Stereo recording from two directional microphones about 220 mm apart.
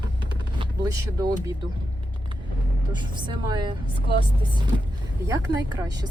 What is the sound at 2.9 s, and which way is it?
Speech, 20° right (ahead or behind).